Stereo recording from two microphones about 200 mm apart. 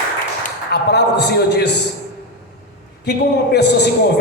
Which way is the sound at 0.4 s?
55° left (ahead or behind).